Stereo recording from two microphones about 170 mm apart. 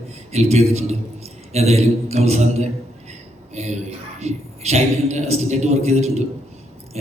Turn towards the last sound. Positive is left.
turn(degrees=-40)  # may be behind; listen again after turning